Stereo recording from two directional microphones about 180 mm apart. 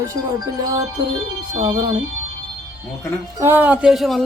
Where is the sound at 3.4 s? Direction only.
10° right (ahead or behind).